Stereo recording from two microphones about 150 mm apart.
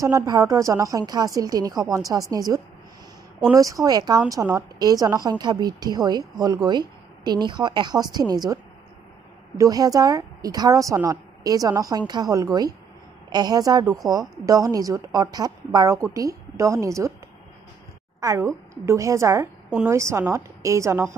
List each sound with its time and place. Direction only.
0.0 s speech: 20° right (ahead or behind)
9.6 s speech: 25° right (ahead or behind)
18.2 s speech: 20° right (ahead or behind)